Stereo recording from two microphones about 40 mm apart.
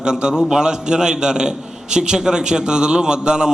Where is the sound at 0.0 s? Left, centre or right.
Right.